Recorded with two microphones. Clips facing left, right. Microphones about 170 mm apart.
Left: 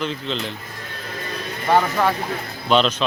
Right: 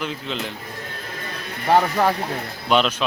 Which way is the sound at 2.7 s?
10° right (ahead or behind).